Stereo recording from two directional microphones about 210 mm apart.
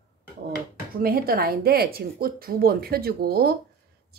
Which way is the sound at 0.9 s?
45° right (ahead or behind).